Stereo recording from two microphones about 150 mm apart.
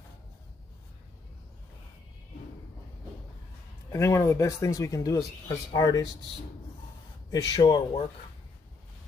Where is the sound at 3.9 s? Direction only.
20° left (ahead or behind).